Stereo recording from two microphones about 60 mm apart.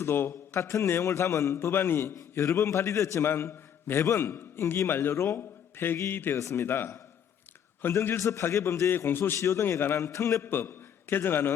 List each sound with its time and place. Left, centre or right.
0.0 s a man's voice: left
1.7 s a man's voice: left
2.3 s a man's voice: left
3.2 s a man's voice: left
4.9 s a man's voice: left
6.3 s a man's voice: left
8.1 s a man's voice: left
9.4 s a man's voice: left
10.5 s a man's voice: left